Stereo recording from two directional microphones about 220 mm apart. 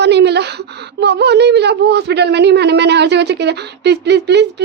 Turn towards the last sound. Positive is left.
turn(degrees=-50)  # may be behind; listen again after turning